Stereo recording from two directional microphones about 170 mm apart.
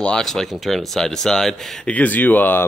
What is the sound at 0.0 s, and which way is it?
Speech, 5° left (ahead or behind).